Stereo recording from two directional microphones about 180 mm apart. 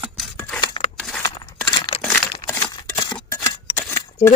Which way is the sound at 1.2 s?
20° left (ahead or behind).